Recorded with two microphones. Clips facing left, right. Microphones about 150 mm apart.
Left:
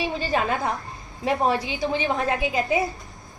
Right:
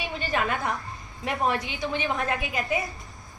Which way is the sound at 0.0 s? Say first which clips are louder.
Left 4 dB; 30° left (ahead or behind).